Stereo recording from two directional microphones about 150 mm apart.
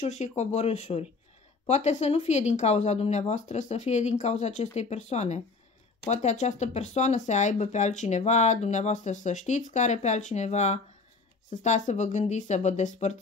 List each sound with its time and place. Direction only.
0.0 s speech: 50° left (ahead or behind)